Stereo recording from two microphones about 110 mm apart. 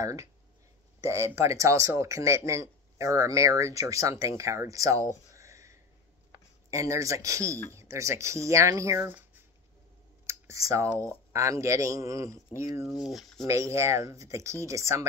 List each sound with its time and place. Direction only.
0.0 s speech: 30° right (ahead or behind)
5.3 s a sound: 30° right (ahead or behind)
6.3 s speech: 30° right (ahead or behind)
13.0 s speech: centre (ahead or behind)
13.5 s speech: 25° right (ahead or behind)